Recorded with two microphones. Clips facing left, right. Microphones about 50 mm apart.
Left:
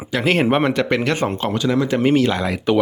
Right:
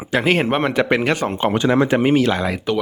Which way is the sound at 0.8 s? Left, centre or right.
Centre.